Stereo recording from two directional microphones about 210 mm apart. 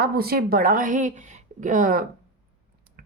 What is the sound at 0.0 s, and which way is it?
Speech, 45° right (ahead or behind).